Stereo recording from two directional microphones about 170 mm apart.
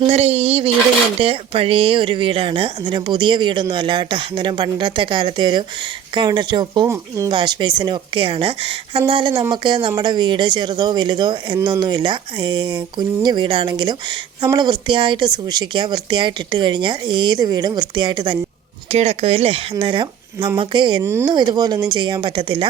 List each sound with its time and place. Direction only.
0.1 s speech: 35° right (ahead or behind)
18.9 s speech: 40° right (ahead or behind)
21.0 s speech: 15° right (ahead or behind)
21.2 s speech: 25° right (ahead or behind)